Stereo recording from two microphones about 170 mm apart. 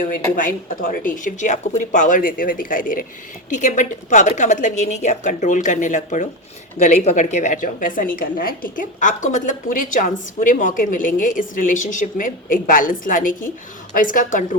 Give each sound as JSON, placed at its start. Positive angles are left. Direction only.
{"t": 0.0, "sound": "a woman's voice", "side_deg": 50}